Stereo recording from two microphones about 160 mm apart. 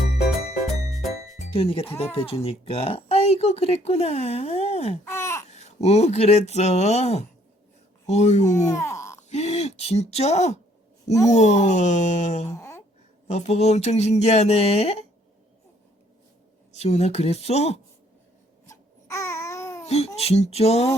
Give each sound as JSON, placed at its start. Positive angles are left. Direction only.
{"t": 0.9, "sound": "music", "side_deg": 0}
{"t": 1.5, "sound": "speech", "side_deg": 35}
{"t": 5.0, "sound": "babbling", "side_deg": 15}
{"t": 5.5, "sound": "speech", "side_deg": 45}
{"t": 8.7, "sound": "a sound", "side_deg": 15}
{"t": 9.3, "sound": "speech", "side_deg": 45}
{"t": 12.5, "sound": "a sound", "side_deg": 20}
{"t": 13.2, "sound": "speech", "side_deg": 45}
{"t": 16.7, "sound": "speech", "side_deg": 40}
{"t": 18.6, "sound": "babbling", "side_deg": 20}
{"t": 19.8, "sound": "baby cry", "side_deg": 40}
{"t": 20.1, "sound": "speech", "side_deg": 40}